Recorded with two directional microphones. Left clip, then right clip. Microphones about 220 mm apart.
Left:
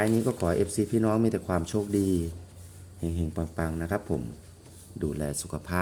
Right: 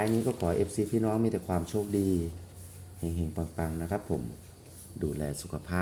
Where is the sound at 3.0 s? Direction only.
20° left (ahead or behind).